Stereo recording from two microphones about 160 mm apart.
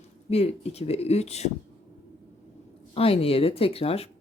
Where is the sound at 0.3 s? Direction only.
40° left (ahead or behind).